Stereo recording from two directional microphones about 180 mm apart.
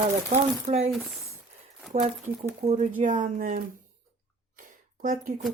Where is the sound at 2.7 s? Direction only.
40° right (ahead or behind).